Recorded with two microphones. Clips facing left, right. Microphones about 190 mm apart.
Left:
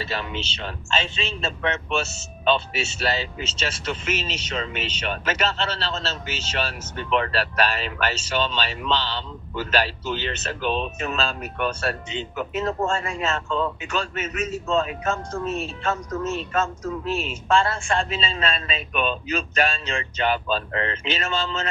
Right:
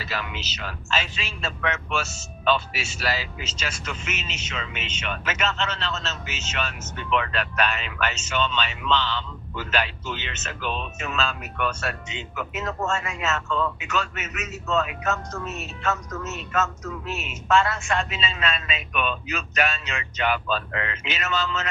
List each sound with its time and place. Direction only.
0.0 s speech: 30° left (ahead or behind)